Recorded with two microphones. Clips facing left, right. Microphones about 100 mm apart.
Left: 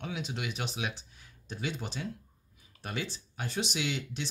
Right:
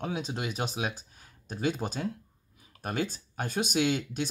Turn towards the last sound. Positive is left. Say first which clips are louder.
# right 7 dB
turn(degrees=-45)  # may be behind; listen again after turning